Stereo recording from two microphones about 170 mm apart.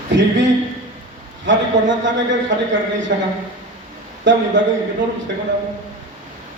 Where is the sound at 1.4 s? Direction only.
90° right.